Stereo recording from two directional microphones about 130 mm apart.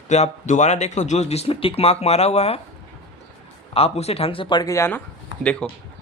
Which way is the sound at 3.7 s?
50° left (ahead or behind).